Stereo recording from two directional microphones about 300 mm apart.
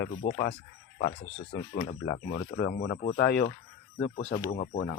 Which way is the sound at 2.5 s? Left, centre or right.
Left.